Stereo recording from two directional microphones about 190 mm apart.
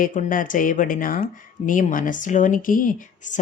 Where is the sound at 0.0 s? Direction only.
45° left (ahead or behind).